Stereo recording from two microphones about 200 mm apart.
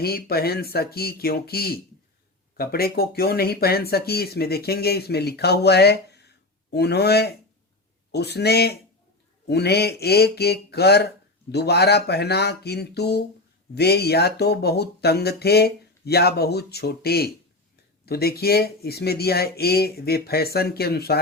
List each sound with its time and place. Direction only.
0.0 s speech: 50° left (ahead or behind)